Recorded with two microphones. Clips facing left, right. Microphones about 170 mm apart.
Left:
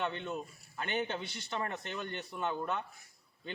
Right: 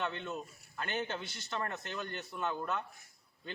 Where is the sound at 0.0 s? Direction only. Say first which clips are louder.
Left 2 dB; 15° left (ahead or behind).